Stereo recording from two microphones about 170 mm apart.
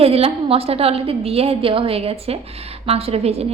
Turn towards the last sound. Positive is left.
turn(degrees=-35)  # may be behind; listen again after turning